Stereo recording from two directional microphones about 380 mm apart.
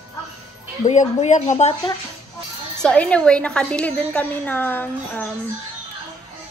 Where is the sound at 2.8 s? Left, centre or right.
Centre.